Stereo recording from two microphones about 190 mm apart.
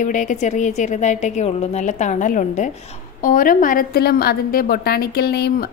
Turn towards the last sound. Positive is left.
turn(degrees=55)  # may be behind; listen again after turning